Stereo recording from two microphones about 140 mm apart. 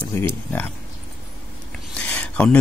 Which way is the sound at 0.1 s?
15° left (ahead or behind).